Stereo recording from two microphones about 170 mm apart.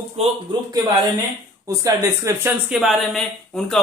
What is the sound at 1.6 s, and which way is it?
Speech, 20° right (ahead or behind).